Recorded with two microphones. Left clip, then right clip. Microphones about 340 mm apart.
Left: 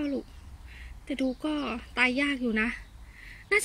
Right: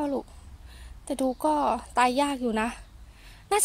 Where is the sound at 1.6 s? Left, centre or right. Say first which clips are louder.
Right 1 dB; right.